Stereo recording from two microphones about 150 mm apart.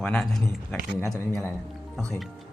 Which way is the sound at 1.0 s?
15° left (ahead or behind).